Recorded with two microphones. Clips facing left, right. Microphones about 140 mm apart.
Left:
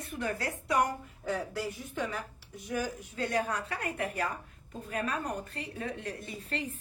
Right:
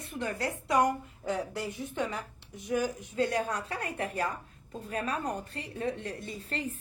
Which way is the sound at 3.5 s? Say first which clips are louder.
Even; 30° right (ahead or behind).